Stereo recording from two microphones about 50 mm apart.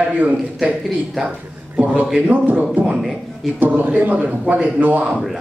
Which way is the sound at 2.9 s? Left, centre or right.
Centre.